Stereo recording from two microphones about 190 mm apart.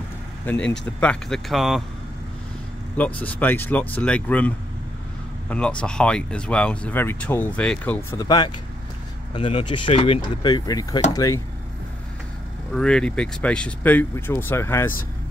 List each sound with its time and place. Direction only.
0.5 s speech: 10° left (ahead or behind)
3.0 s speech: 10° left (ahead or behind)
12.7 s speech: 5° left (ahead or behind)